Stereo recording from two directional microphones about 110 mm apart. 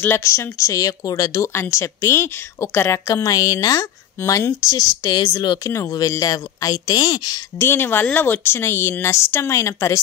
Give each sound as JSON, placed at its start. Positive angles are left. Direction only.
{"t": 0.0, "sound": "speech", "side_deg": 25}
{"t": 7.5, "sound": "speech", "side_deg": 20}